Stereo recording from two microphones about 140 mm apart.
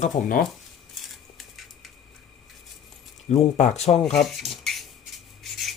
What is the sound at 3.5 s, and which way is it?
Speech, 55° left (ahead or behind).